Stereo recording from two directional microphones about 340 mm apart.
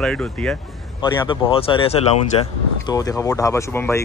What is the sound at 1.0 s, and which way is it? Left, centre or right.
Speech, centre.